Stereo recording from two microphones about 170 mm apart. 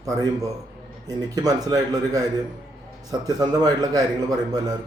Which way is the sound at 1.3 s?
20° right (ahead or behind).